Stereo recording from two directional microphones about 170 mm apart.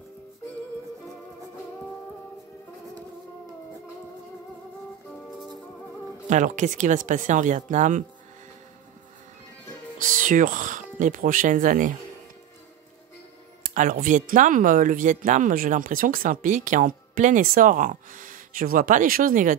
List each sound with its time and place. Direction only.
6.3 s speech: 45° right (ahead or behind)
10.0 s speech: 50° right (ahead or behind)
13.7 s speech: 55° right (ahead or behind)